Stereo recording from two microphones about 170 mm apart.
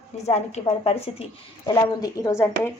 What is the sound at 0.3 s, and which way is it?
Speech, 40° left (ahead or behind).